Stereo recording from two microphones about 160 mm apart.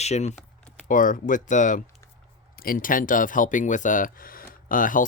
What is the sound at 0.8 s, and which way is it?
Speech, 55° left (ahead or behind).